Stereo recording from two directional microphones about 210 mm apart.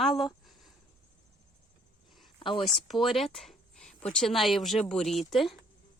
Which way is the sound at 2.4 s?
25° left (ahead or behind).